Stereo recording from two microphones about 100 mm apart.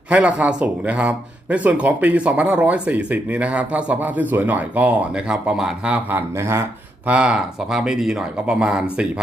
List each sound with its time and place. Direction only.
0.1 s speech: 15° right (ahead or behind)
6.3 s speech: 25° right (ahead or behind)
7.1 s speech: 10° right (ahead or behind)